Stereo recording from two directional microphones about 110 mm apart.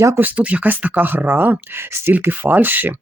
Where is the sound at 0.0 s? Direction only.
25° right (ahead or behind).